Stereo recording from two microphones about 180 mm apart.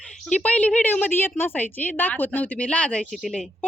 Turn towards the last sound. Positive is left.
turn(degrees=5)  # may be behind; listen again after turning